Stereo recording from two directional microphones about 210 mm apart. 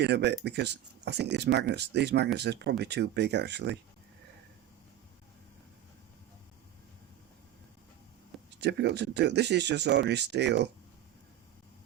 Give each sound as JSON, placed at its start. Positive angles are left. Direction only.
{"t": 0.0, "sound": "speech", "side_deg": -55}
{"t": 8.4, "sound": "speech", "side_deg": -55}